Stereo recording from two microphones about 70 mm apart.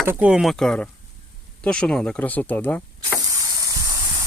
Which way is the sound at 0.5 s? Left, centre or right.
Centre.